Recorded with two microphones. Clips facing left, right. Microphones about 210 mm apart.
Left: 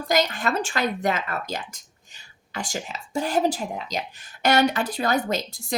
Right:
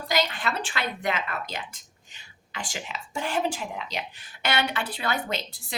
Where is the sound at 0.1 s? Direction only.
45° left (ahead or behind).